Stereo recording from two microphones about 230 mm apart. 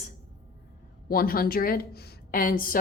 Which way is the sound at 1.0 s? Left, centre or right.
Left.